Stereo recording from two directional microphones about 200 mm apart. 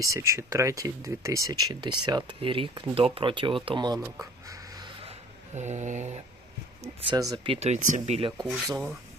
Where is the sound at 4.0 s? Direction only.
15° right (ahead or behind); by 6.2 s 35° right (ahead or behind).